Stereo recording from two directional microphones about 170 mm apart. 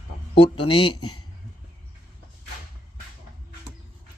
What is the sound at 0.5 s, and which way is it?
Speech, 30° left (ahead or behind).